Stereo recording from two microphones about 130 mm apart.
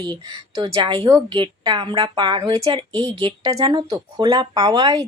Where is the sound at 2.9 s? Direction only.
10° left (ahead or behind).